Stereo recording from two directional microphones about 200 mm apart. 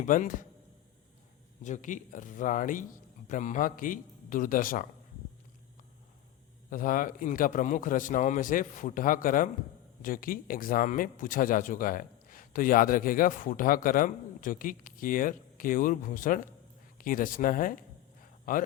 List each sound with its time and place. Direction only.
0.0 s speech: 40° left (ahead or behind)
1.6 s speech: 40° left (ahead or behind)
6.7 s speech: 45° left (ahead or behind)